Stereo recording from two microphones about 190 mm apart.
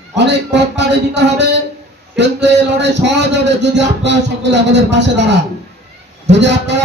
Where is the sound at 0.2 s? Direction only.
65° right (ahead or behind).